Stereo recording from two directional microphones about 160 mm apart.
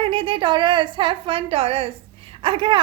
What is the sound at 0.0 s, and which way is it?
A woman's voice, 35° right (ahead or behind).